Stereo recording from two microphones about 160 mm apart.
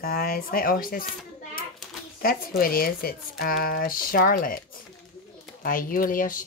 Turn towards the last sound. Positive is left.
turn(degrees=60)  # may be behind; listen again after turning